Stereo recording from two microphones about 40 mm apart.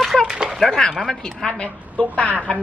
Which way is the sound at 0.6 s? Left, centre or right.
Centre.